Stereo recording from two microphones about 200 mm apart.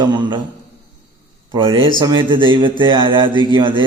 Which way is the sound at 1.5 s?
25° right (ahead or behind).